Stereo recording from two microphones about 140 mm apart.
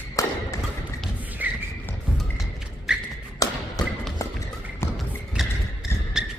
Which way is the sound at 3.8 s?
25° left (ahead or behind).